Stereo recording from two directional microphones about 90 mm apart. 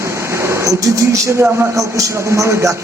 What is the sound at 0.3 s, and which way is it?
Speech, 30° right (ahead or behind).